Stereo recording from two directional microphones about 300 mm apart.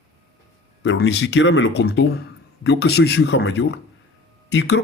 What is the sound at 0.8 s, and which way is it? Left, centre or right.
A man's voice, left.